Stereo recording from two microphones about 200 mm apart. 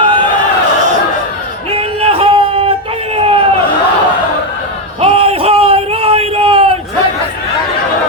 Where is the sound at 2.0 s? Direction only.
30° right (ahead or behind).